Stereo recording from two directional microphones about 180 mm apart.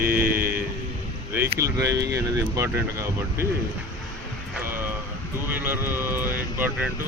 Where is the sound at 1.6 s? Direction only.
15° right (ahead or behind).